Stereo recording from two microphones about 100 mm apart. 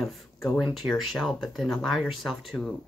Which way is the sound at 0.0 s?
Centre (ahead or behind).